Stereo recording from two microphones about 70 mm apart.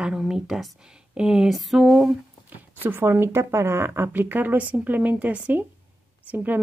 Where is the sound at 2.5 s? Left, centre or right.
Right.